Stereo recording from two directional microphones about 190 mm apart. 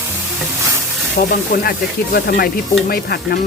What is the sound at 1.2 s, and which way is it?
Speech, 45° left (ahead or behind).